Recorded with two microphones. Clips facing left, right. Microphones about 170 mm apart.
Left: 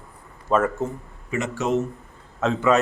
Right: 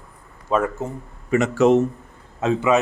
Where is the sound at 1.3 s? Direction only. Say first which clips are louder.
Right 8 dB; 60° right (ahead or behind).